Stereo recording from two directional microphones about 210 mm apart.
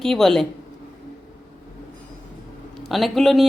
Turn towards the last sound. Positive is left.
turn(degrees=0)  # may be behind; listen again after turning